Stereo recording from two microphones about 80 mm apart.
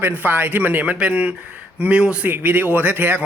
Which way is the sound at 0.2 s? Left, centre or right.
Right.